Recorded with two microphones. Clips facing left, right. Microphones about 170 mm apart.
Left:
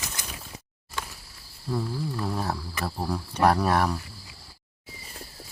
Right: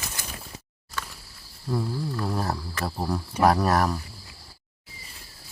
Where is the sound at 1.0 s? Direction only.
15° left (ahead or behind).